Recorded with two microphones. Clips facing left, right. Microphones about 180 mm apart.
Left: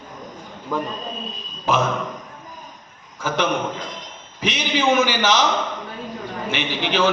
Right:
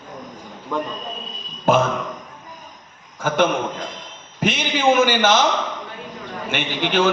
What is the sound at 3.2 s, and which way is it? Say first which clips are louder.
Speech: right 2 dB; 55° right (ahead or behind).